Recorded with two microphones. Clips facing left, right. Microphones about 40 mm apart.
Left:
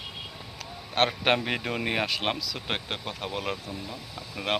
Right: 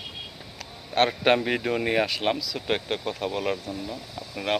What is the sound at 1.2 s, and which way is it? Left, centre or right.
Speech, left.